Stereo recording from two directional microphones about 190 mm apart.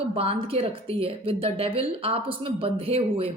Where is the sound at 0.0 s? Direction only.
30° right (ahead or behind).